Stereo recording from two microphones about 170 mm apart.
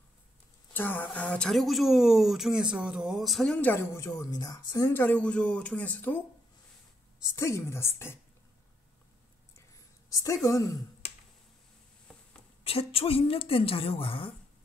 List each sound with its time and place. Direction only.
0.7 s speech: 10° left (ahead or behind)
7.3 s speech: 15° left (ahead or behind)
10.0 s a woman's voice: 20° left (ahead or behind)
12.6 s a woman's voice: 35° left (ahead or behind)